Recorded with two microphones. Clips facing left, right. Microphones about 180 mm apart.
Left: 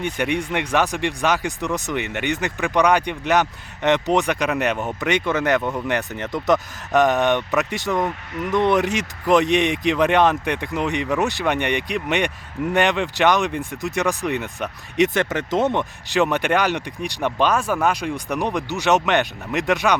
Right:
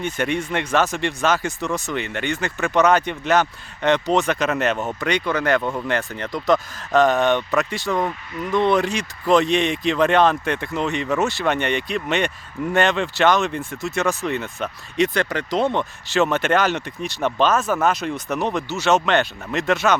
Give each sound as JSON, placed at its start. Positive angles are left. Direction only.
{"t": 0.0, "sound": "speech", "side_deg": 15}